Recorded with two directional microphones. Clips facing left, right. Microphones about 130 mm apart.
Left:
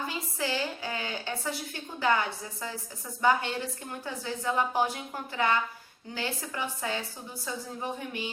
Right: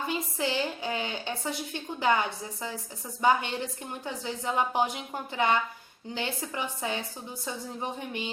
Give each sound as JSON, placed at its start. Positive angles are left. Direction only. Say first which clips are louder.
{"t": 0.3, "sound": "a woman's voice", "louder": "left 1 dB", "side_deg": -20}